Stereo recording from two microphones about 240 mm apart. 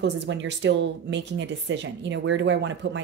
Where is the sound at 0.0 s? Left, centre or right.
Right.